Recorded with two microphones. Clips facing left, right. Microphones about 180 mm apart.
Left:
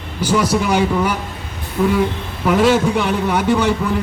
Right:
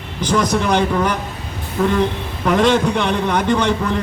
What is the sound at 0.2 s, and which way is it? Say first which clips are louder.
A man's voice: left 1 dB; 10° left (ahead or behind).